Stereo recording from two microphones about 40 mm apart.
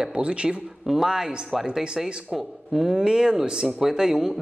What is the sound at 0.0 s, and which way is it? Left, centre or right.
Speech, right.